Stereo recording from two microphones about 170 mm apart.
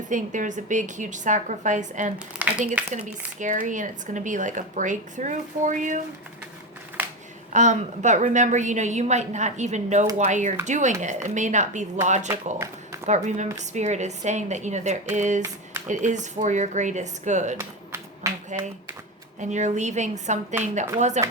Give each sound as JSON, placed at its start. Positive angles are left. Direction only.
{"t": 0.1, "sound": "speech", "side_deg": -45}
{"t": 2.4, "sound": "speech", "side_deg": -10}
{"t": 3.3, "sound": "speech", "side_deg": -50}
{"t": 7.5, "sound": "speech", "side_deg": -45}
{"t": 17.6, "sound": "a sound", "side_deg": -15}
{"t": 18.5, "sound": "speech", "side_deg": -45}